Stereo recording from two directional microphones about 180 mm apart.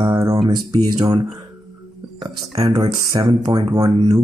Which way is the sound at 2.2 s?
20° right (ahead or behind).